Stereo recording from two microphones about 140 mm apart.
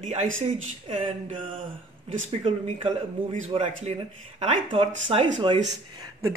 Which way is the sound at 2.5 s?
55° right (ahead or behind).